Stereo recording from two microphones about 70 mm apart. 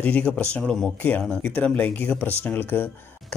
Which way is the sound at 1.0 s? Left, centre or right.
Left.